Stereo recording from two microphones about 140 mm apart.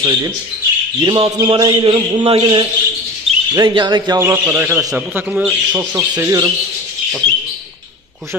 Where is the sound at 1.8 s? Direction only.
35° right (ahead or behind).